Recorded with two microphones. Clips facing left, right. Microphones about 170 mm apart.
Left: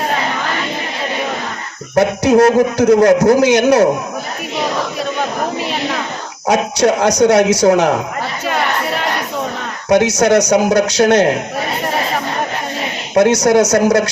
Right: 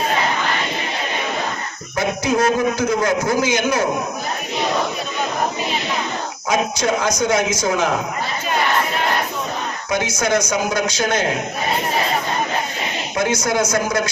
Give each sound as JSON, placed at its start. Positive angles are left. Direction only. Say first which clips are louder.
{"t": 2.0, "sound": "a man's voice", "louder": "left 8 dB", "side_deg": 70}
{"t": 6.5, "sound": "speech", "louder": "left 6 dB", "side_deg": 65}
{"t": 9.9, "sound": "speech", "louder": "left 9 dB", "side_deg": 70}
{"t": 13.1, "sound": "a man's voice", "louder": "left 9 dB", "side_deg": 65}